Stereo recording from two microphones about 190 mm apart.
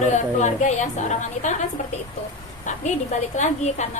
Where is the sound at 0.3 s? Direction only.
40° left (ahead or behind).